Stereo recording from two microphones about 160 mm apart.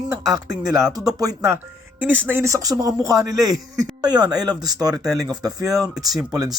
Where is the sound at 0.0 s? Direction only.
20° right (ahead or behind).